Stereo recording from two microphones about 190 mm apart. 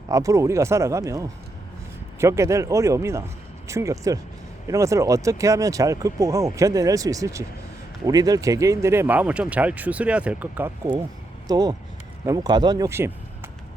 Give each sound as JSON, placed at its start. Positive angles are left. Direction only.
{"t": 0.1, "sound": "speech", "side_deg": -15}
{"t": 11.4, "sound": "a man's voice", "side_deg": -20}